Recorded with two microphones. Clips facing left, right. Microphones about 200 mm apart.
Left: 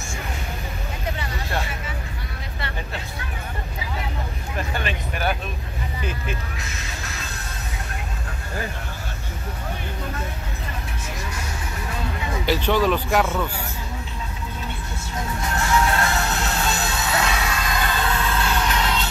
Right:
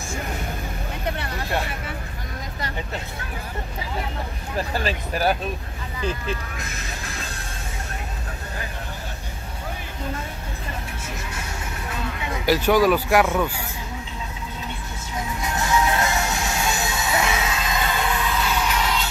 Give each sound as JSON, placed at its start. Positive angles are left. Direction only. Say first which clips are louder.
{"t": 4.6, "sound": "speech", "louder": "right 3 dB", "side_deg": -35}
{"t": 12.4, "sound": "speech", "louder": "right 3 dB", "side_deg": -10}
{"t": 15.4, "sound": "music", "louder": "even", "side_deg": -15}